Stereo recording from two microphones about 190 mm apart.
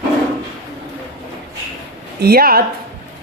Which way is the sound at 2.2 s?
55° right (ahead or behind).